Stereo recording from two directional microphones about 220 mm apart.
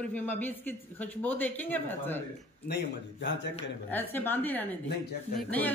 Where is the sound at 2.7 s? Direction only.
50° left (ahead or behind).